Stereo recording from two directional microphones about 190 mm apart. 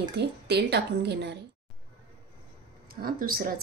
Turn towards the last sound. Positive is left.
turn(degrees=-50)  # may be behind; listen again after turning